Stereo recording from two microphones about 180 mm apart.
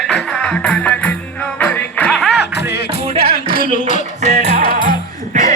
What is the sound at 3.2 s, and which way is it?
Music, 55° left (ahead or behind).